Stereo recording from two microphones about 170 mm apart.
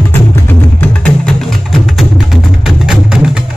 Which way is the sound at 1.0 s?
5° left (ahead or behind).